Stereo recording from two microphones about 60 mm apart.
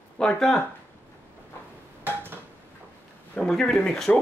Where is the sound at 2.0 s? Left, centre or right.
Right.